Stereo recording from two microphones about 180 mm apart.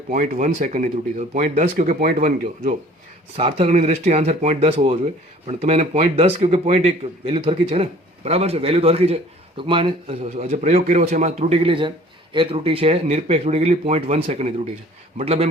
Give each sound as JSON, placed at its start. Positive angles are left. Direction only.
{"t": 0.1, "sound": "speech", "side_deg": -45}
{"t": 3.3, "sound": "speech", "side_deg": -35}